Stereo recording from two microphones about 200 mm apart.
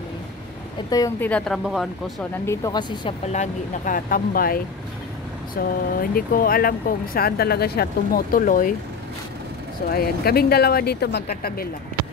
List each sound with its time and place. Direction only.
0.8 s a woman's voice: 15° left (ahead or behind)
1.3 s speech: centre (ahead or behind)
2.4 s speech: 15° left (ahead or behind)
3.3 s speech: 40° left (ahead or behind)
5.6 s speech: 45° left (ahead or behind)
9.8 s speech: 50° left (ahead or behind)